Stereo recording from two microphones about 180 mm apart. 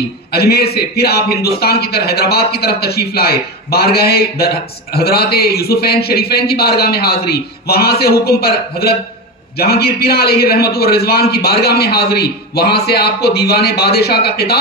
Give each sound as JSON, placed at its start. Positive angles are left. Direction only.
{"t": 0.3, "sound": "a man's voice", "side_deg": 60}